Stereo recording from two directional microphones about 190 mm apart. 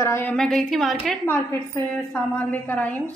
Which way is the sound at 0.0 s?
10° left (ahead or behind).